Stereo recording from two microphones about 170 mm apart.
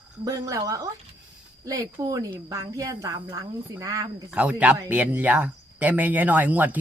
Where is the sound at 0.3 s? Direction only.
20° right (ahead or behind).